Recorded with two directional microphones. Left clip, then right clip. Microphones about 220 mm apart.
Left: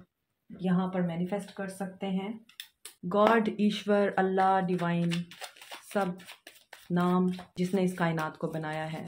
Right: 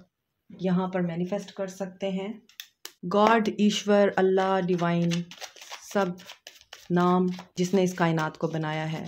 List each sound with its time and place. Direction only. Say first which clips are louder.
0.6 s speech: right 4 dB; 50° right (ahead or behind)
6.9 s speech: right 5 dB; 45° right (ahead or behind)